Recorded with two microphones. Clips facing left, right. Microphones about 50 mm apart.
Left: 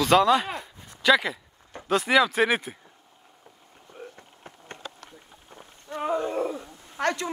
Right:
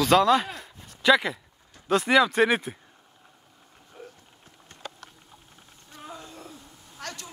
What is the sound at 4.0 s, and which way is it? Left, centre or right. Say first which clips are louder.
Boat: left 2 dB; left.